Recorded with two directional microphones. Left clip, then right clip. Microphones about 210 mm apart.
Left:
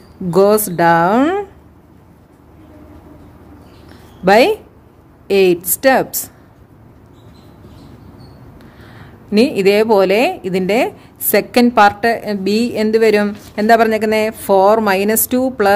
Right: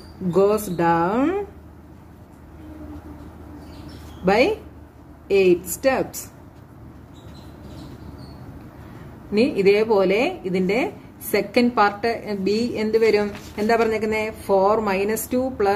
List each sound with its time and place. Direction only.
0.3 s speech: 55° left (ahead or behind)
4.2 s speech: 55° left (ahead or behind)
9.3 s a woman's voice: 50° left (ahead or behind)